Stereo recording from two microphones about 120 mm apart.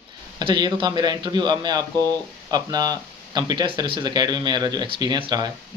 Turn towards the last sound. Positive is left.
turn(degrees=-35)  # may be behind; listen again after turning